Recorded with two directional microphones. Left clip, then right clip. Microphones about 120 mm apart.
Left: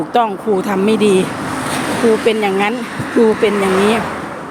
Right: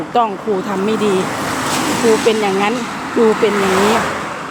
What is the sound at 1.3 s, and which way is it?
Vehicle, 65° right (ahead or behind).